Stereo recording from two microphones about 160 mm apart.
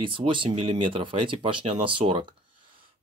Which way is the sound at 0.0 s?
35° right (ahead or behind).